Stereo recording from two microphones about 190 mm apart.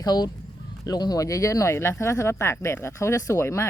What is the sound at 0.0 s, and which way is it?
Speech, 20° left (ahead or behind).